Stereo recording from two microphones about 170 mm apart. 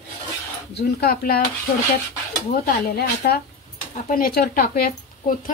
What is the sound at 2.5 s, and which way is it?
A woman's voice, 65° left (ahead or behind).